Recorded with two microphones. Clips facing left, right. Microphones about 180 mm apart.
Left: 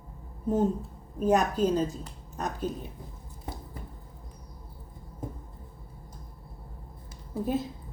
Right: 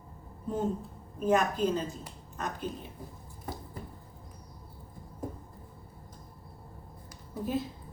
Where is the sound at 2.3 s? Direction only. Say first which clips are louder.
Left 4 dB; 40° left (ahead or behind).